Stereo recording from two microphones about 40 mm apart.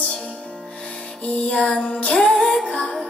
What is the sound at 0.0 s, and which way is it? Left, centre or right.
Music, left.